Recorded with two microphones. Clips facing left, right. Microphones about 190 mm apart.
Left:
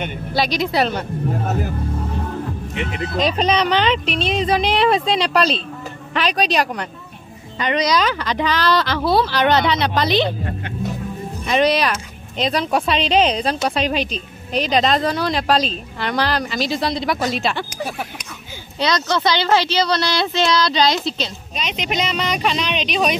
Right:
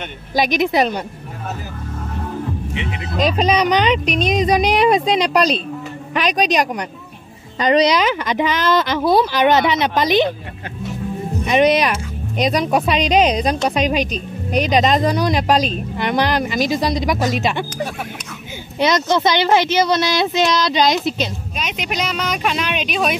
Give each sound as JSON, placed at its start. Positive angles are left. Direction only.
{"t": 0.3, "sound": "speech", "side_deg": -20}
{"t": 1.3, "sound": "speech", "side_deg": 50}
{"t": 2.7, "sound": "speech", "side_deg": 45}
{"t": 3.2, "sound": "speech", "side_deg": -10}
{"t": 4.0, "sound": "speech", "side_deg": -40}
{"t": 4.8, "sound": "speech", "side_deg": -15}
{"t": 7.6, "sound": "speech", "side_deg": -35}
{"t": 8.0, "sound": "speech", "side_deg": -15}
{"t": 11.4, "sound": "speech", "side_deg": -20}
{"t": 18.8, "sound": "speech", "side_deg": -20}
{"t": 21.6, "sound": "speech", "side_deg": -5}